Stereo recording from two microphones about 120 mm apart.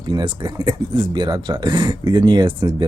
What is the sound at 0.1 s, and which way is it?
Speech, 40° right (ahead or behind).